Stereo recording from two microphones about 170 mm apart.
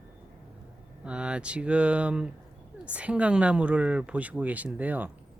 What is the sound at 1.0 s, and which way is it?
Speech, 5° right (ahead or behind).